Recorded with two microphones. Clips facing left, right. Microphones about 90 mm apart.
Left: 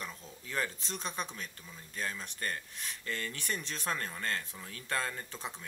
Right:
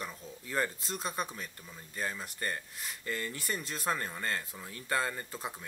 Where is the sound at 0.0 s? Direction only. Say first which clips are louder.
Right 2 dB; 5° right (ahead or behind).